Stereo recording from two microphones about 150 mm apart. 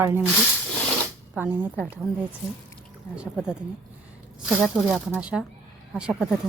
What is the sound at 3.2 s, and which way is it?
A woman's voice, 5° right (ahead or behind).